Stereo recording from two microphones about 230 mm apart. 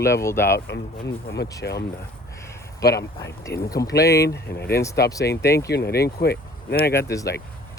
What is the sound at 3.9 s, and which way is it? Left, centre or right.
Speech, left.